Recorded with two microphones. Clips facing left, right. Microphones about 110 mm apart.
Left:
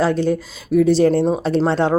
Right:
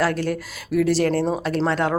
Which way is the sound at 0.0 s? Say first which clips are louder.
Left 5 dB; 20° left (ahead or behind).